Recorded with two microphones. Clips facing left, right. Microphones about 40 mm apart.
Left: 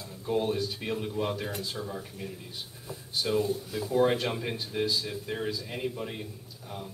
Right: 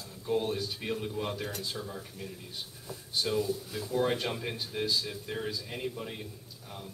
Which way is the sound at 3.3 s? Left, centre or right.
Left.